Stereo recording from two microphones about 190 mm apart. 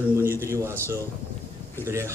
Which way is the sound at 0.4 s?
15° right (ahead or behind).